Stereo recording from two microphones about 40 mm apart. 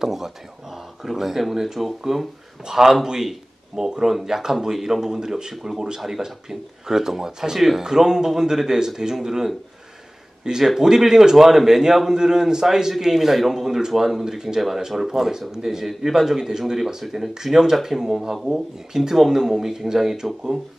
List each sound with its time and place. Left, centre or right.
0.0 s speech: centre